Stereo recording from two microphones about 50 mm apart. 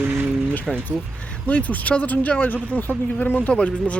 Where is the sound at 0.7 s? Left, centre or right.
Centre.